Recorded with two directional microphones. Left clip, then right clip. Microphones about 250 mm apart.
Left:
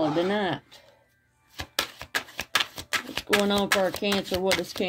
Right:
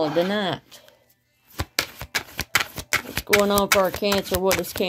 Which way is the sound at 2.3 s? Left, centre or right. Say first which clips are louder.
Right 4 dB; right.